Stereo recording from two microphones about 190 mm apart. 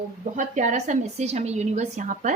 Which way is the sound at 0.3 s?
40° right (ahead or behind).